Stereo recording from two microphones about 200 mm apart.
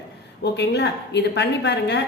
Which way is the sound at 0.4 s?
55° left (ahead or behind).